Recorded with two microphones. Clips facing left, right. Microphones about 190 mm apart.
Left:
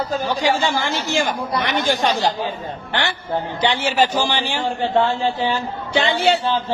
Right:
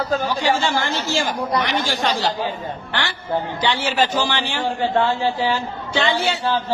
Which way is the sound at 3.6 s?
20° left (ahead or behind).